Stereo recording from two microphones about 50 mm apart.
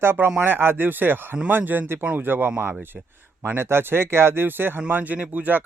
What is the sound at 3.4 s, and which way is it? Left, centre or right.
Speech, right.